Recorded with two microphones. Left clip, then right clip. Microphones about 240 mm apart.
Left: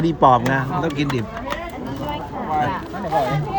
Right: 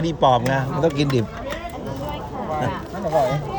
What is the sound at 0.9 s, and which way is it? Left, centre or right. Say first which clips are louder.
Speech: right 2 dB; centre.